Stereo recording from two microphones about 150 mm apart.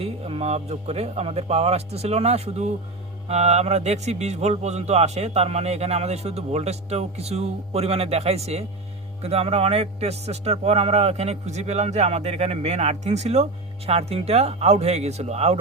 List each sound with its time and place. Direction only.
0.0 s speech: 40° right (ahead or behind)